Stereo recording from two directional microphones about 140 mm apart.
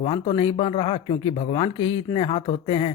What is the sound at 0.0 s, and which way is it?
Speech, 40° left (ahead or behind).